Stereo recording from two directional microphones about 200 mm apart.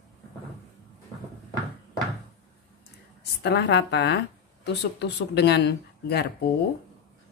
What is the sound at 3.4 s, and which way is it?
Speech, 55° left (ahead or behind).